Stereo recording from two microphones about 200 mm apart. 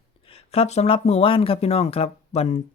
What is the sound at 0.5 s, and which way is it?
Speech, 30° left (ahead or behind).